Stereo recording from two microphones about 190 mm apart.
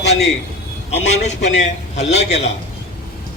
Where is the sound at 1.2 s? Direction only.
35° left (ahead or behind).